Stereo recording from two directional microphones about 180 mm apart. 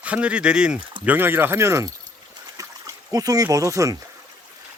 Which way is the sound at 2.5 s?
20° right (ahead or behind).